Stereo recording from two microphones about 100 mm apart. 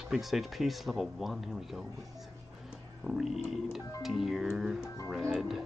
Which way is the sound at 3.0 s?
5° right (ahead or behind).